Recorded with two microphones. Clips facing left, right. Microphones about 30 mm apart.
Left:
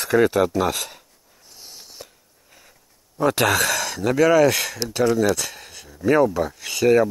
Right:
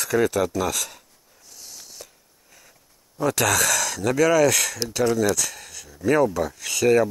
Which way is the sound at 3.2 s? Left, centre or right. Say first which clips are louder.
Left 3 dB; left.